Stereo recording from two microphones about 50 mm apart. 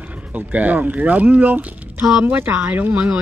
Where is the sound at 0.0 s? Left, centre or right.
Right.